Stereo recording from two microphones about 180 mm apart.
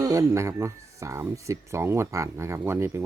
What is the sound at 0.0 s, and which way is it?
Speech, 20° right (ahead or behind).